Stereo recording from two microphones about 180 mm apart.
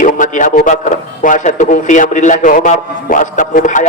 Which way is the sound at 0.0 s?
45° left (ahead or behind).